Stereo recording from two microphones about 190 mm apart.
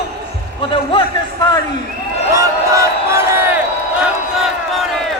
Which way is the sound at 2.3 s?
15° right (ahead or behind).